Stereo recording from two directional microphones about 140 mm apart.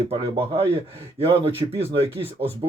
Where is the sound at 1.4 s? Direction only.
40° right (ahead or behind).